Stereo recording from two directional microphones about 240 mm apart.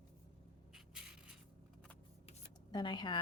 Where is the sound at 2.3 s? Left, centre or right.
Centre.